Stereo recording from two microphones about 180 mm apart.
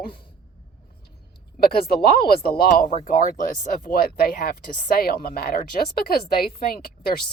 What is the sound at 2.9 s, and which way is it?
Speech, 40° left (ahead or behind).